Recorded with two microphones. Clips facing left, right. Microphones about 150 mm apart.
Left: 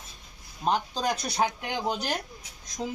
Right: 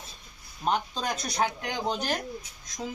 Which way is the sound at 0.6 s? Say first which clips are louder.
Left 2 dB; 15° left (ahead or behind).